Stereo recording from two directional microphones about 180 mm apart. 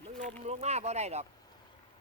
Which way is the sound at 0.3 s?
35° right (ahead or behind).